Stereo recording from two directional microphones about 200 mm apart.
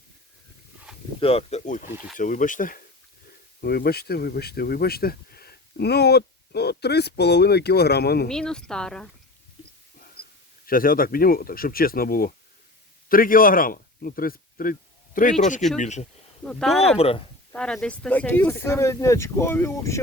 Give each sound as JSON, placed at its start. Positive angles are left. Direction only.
{"t": 1.2, "sound": "speech", "side_deg": 30}
{"t": 8.3, "sound": "speech", "side_deg": 5}
{"t": 10.7, "sound": "a man's voice", "side_deg": 45}
{"t": 16.4, "sound": "speech", "side_deg": 5}
{"t": 17.0, "sound": "speech", "side_deg": 30}
{"t": 17.5, "sound": "speech", "side_deg": 5}